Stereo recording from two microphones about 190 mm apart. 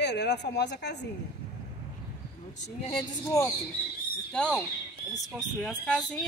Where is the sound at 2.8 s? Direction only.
15° left (ahead or behind).